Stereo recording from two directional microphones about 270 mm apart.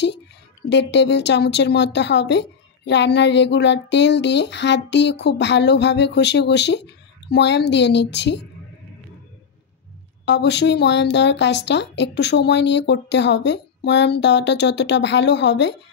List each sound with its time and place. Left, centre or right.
0.7 s a woman's voice: left
10.2 s a woman's voice: left